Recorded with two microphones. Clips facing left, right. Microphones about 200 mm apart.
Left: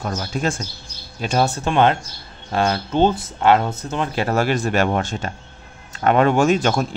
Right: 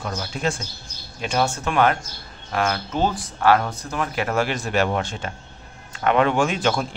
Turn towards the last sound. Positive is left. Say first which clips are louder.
# left 4 dB
turn(degrees=45)  # may be behind; listen again after turning